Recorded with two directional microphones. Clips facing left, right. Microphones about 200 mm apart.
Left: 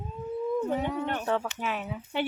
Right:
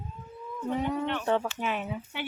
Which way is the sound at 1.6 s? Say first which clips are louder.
Right 1 dB; centre (ahead or behind).